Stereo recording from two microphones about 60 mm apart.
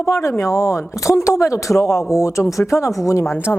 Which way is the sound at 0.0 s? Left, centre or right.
Left.